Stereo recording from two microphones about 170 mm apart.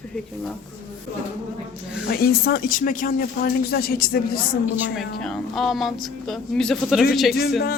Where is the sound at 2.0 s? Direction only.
60° left (ahead or behind).